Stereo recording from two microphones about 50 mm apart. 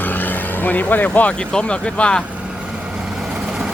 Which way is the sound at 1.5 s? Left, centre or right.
Centre.